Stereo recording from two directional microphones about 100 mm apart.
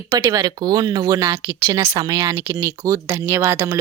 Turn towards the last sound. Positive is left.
turn(degrees=-25)  # may be behind; listen again after turning